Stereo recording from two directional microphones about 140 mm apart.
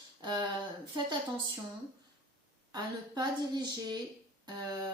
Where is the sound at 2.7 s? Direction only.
30° right (ahead or behind).